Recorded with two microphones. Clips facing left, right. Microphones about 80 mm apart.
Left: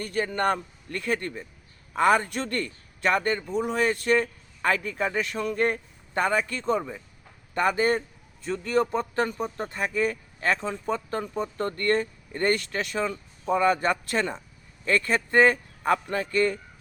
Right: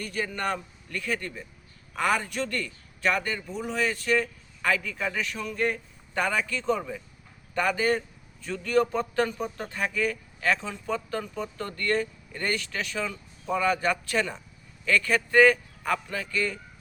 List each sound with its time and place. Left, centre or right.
0.0 s a man's voice: left
6.7 s speech: left
7.5 s a man's voice: left